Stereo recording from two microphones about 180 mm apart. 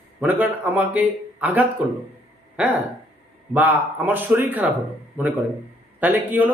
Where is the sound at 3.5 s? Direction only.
10° right (ahead or behind).